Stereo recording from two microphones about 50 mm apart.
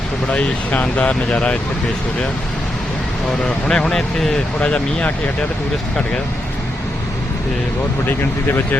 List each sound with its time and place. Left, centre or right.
0.3 s speech: left
3.7 s speech: centre
4.6 s speech: left
8.0 s speech: left